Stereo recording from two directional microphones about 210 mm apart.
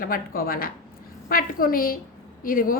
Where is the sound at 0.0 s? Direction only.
45° left (ahead or behind).